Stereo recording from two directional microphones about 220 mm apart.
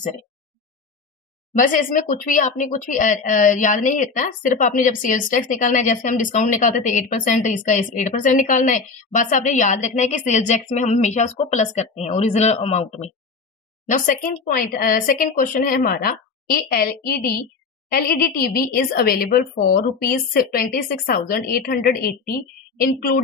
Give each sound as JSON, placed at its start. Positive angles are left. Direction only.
{"t": 1.5, "sound": "a woman's voice", "side_deg": 35}